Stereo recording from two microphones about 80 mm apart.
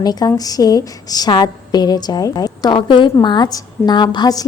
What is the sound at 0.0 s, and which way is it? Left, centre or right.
A woman's voice, left.